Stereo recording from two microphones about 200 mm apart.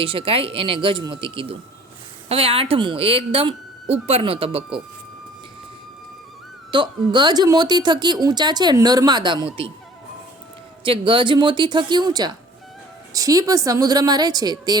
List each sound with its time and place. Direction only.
0.0 s a woman's voice: 25° right (ahead or behind)
6.7 s a woman's voice: 25° right (ahead or behind)
10.8 s a woman's voice: 25° right (ahead or behind)